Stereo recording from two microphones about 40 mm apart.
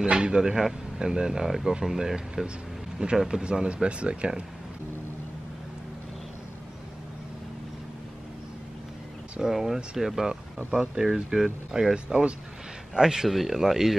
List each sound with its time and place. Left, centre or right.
0.1 s speech: right
9.4 s speech: centre